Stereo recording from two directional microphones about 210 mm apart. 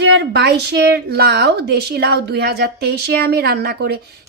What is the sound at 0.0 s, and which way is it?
A woman's voice, 55° right (ahead or behind).